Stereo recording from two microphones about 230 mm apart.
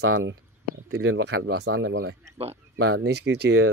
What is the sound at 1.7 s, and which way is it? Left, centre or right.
Speech, right.